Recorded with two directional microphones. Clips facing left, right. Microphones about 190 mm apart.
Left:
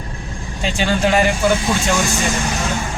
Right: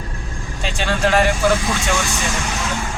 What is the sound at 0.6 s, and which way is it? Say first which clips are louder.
Speech: left 2 dB; centre (ahead or behind).